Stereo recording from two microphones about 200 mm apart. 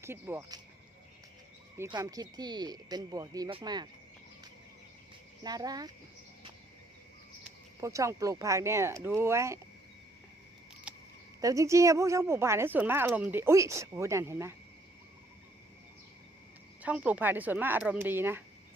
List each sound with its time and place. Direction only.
0.0 s a woman's voice: 10° right (ahead or behind)
1.8 s speech: 20° right (ahead or behind)
5.4 s speech: 20° right (ahead or behind)
7.8 s a woman's voice: 15° right (ahead or behind)
11.3 s a woman's voice: 15° right (ahead or behind)
16.8 s a woman's voice: 5° right (ahead or behind)